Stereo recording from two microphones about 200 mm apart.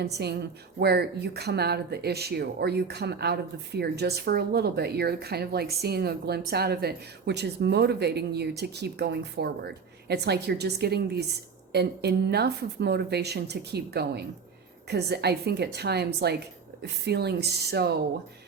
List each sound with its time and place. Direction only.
0.0 s a woman's voice: 55° right (ahead or behind)